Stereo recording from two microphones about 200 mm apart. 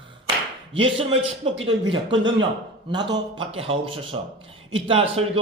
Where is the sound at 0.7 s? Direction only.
25° right (ahead or behind).